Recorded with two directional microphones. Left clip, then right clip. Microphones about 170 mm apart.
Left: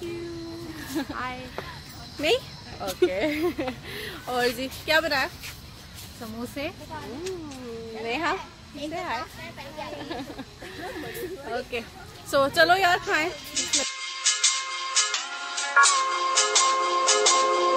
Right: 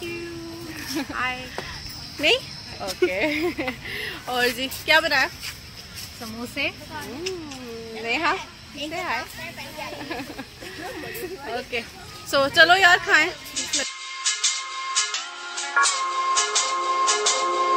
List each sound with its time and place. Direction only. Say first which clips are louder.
1.1 s speech: right 6 dB; 5° left (ahead or behind)
2.2 s speech: right 4 dB; 5° right (ahead or behind)
6.4 s speech: right 6 dB; centre (ahead or behind)
8.0 s a child's voice: right 4 dB; 15° right (ahead or behind)
11.7 s speech: right 3 dB; centre (ahead or behind)
12.3 s music: right 4 dB; 5° right (ahead or behind)